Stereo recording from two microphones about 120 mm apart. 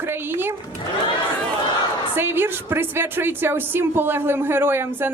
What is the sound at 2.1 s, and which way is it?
A woman's voice, 20° right (ahead or behind).